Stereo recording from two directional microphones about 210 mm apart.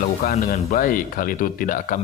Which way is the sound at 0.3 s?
40° left (ahead or behind).